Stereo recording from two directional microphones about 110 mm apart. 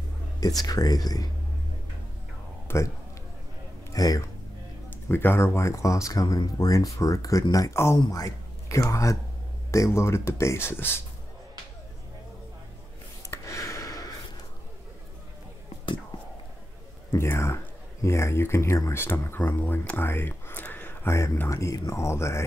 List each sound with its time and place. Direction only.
0.4 s speech: 35° left (ahead or behind)
2.7 s a man's voice: 20° left (ahead or behind)
3.9 s speech: 35° left (ahead or behind)
4.8 s speech: 20° left (ahead or behind)
13.3 s a sound: 30° left (ahead or behind)
17.1 s speech: 25° left (ahead or behind)